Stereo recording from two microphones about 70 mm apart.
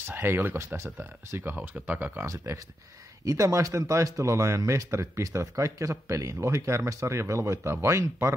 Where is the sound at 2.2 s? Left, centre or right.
Right.